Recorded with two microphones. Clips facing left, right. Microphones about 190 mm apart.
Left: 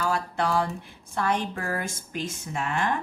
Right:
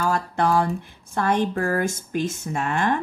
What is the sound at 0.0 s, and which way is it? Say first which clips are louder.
Speech: right 4 dB; 50° right (ahead or behind).